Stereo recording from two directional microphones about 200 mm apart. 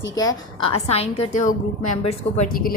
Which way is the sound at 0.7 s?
30° left (ahead or behind).